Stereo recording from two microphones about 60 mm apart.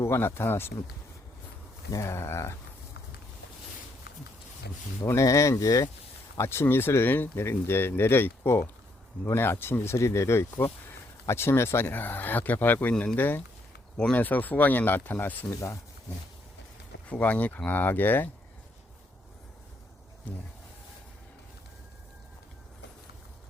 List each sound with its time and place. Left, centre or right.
0.0 s speech: left
2.0 s speech: left
5.2 s speech: left
6.3 s speech: left
12.9 s speech: centre
13.1 s speech: left
13.9 s speech: left
17.1 s speech: left